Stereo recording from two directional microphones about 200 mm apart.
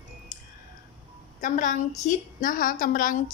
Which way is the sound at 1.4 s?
40° left (ahead or behind).